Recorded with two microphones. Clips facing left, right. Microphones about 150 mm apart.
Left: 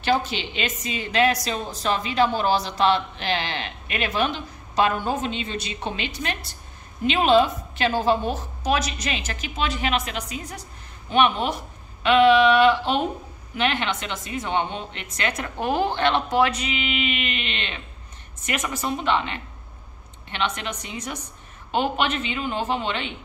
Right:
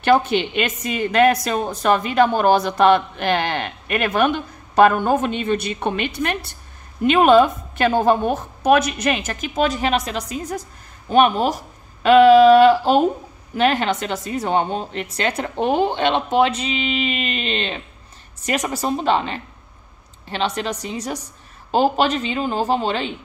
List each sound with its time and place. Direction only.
0.0 s a woman's voice: 55° right (ahead or behind); by 23.1 s 35° right (ahead or behind)